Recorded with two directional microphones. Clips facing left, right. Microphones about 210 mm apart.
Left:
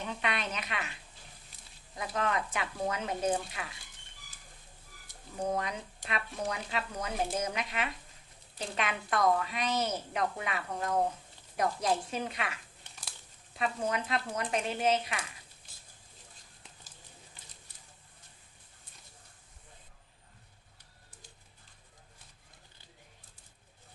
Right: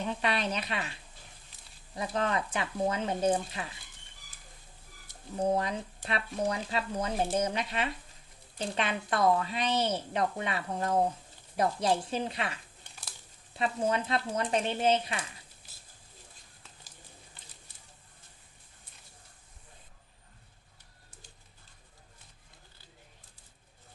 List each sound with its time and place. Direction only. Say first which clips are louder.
0.2 s a woman's voice: right 4 dB; 35° right (ahead or behind)
2.0 s speech: right 2 dB; 30° right (ahead or behind)
5.5 s speech: right 4 dB; 30° right (ahead or behind)
13.6 s speech: right 3 dB; 30° right (ahead or behind)